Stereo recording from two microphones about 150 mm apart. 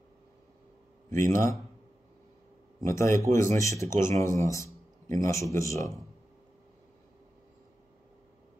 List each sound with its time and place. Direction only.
1.1 s a man's voice: 20° left (ahead or behind)
2.9 s a man's voice: 20° left (ahead or behind)